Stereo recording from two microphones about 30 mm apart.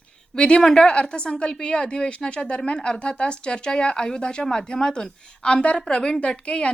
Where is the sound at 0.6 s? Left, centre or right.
Centre.